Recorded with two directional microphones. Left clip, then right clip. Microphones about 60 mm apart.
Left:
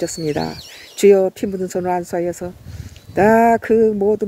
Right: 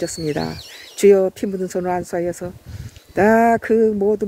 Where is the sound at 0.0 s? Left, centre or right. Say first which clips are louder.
Left 2 dB; left.